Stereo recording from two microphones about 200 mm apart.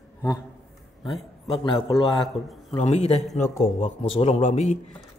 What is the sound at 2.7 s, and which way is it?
A man's voice, 35° left (ahead or behind).